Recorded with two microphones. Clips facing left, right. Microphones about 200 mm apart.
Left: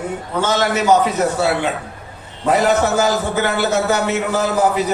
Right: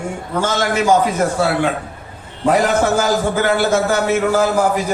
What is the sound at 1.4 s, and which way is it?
Speech, 50° right (ahead or behind).